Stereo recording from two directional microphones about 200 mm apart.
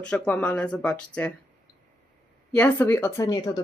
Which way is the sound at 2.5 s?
10° left (ahead or behind).